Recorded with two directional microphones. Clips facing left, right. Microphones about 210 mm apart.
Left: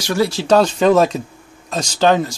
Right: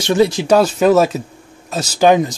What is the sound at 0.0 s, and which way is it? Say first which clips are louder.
Speech: right 4 dB; 20° right (ahead or behind).